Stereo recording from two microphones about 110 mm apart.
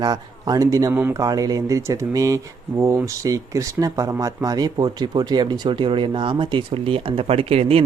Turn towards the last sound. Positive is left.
turn(degrees=-60)  # may be behind; listen again after turning